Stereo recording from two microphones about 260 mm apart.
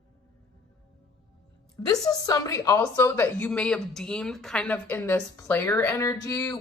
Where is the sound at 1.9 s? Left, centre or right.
Centre.